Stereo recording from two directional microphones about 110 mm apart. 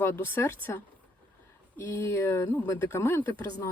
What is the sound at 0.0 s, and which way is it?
Speech, 20° left (ahead or behind).